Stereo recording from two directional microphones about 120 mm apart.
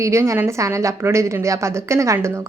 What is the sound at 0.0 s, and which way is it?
A woman's voice, 25° right (ahead or behind).